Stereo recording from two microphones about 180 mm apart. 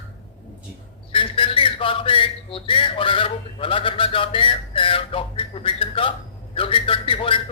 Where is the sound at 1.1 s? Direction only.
30° left (ahead or behind).